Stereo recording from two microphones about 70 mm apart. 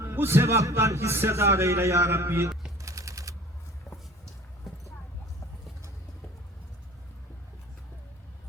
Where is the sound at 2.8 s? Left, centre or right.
Right.